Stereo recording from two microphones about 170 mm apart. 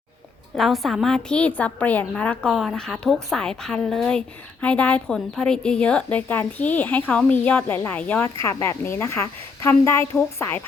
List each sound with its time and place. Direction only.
0.5 s a woman's voice: centre (ahead or behind)